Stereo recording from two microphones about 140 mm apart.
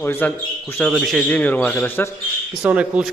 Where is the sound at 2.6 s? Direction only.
15° right (ahead or behind).